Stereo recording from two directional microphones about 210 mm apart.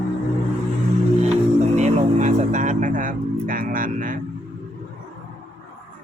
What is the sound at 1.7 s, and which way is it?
Music, 35° right (ahead or behind).